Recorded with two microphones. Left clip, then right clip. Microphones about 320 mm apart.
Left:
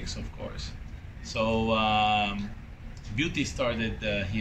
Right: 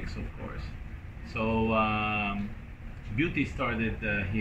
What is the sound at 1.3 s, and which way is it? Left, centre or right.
Speech, centre.